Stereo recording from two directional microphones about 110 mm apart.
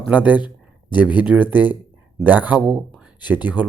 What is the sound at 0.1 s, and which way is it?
Speech, 15° right (ahead or behind).